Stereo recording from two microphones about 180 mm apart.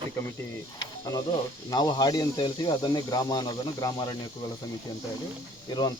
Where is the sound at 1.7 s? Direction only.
25° left (ahead or behind).